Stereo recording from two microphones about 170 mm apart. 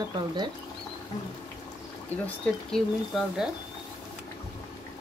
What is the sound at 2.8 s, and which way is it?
Speech, 5° left (ahead or behind).